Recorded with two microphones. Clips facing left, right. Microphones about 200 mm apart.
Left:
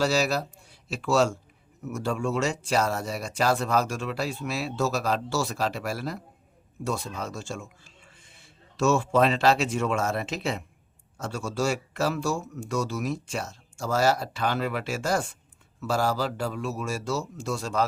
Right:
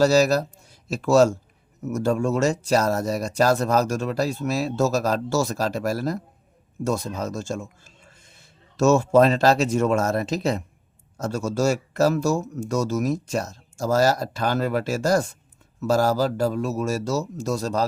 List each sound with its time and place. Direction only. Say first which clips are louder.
0.0 s speech: right 7 dB; 40° right (ahead or behind)